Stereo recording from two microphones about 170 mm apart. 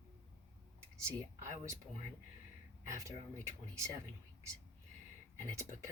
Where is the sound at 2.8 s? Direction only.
15° right (ahead or behind).